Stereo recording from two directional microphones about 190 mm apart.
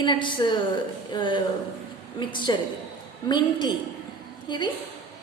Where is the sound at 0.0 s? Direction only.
25° left (ahead or behind).